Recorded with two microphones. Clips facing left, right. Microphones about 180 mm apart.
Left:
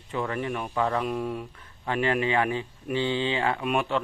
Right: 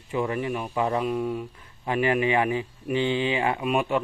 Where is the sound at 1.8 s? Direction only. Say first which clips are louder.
Right 2 dB; 15° right (ahead or behind).